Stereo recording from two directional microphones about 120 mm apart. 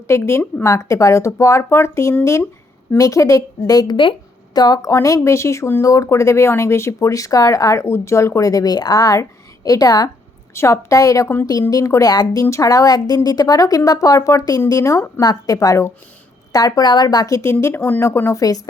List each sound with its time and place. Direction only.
0.1 s a woman's voice: 25° left (ahead or behind)
15.2 s speech: 30° left (ahead or behind)